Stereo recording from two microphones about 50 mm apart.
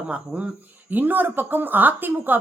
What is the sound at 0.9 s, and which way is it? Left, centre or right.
Speech, right.